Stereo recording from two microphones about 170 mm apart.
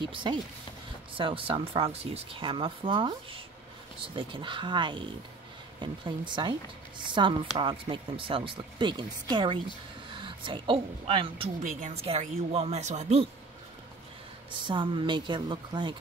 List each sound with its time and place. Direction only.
0.0 s speech: 30° right (ahead or behind)
11.6 s speech: 45° right (ahead or behind)
14.6 s speech: 30° right (ahead or behind)